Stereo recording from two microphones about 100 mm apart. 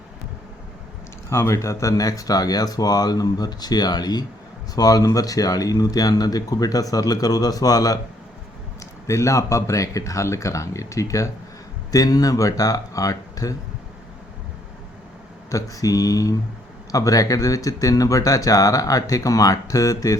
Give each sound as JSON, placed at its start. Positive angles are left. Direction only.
{"t": 1.3, "sound": "speech", "side_deg": 30}
{"t": 15.4, "sound": "speech", "side_deg": 35}